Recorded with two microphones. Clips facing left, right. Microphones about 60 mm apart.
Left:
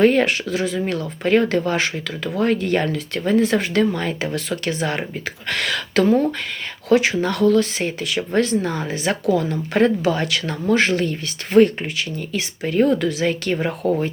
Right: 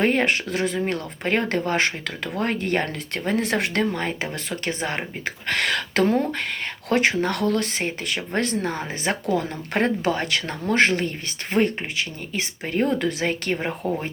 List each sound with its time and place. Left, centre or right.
0.0 s speech: right
0.5 s speech: right
3.3 s speech: right
3.8 s speech: right
5.5 s speech: right
13.8 s speech: centre